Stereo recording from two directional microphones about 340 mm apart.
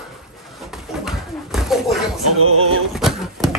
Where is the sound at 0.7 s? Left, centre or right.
Centre.